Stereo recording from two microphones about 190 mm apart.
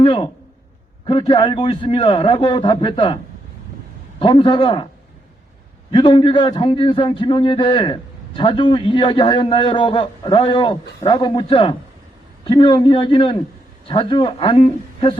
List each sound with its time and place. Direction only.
0.0 s a man's voice: 25° left (ahead or behind)
4.2 s a man's voice: 25° left (ahead or behind)
5.9 s a man's voice: 25° left (ahead or behind)